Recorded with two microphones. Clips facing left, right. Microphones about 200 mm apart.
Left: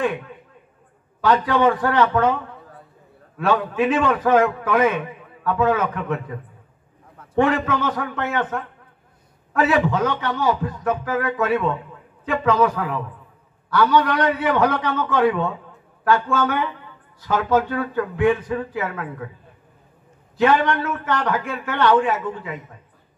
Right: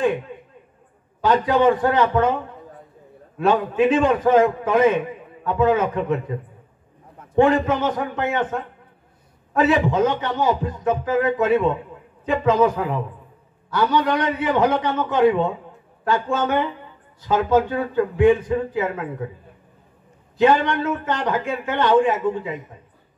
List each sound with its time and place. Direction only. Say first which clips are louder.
1.2 s a man's voice: right 1 dB; 25° right (ahead or behind)
7.2 s a sound: right 2 dB; 20° right (ahead or behind)
7.6 s a man's voice: right 2 dB; 20° right (ahead or behind)
20.3 s a man's voice: right 1 dB; 20° right (ahead or behind)